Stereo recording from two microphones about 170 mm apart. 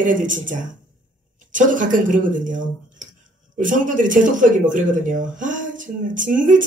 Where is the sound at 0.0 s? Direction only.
50° right (ahead or behind).